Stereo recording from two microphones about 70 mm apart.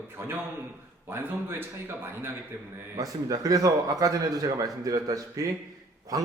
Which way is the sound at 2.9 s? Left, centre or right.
Right.